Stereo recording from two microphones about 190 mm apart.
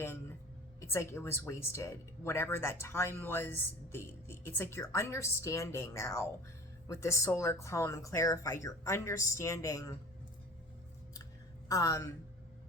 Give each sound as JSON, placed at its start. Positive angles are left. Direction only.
{"t": 0.8, "sound": "speech", "side_deg": 15}
{"t": 11.7, "sound": "speech", "side_deg": 15}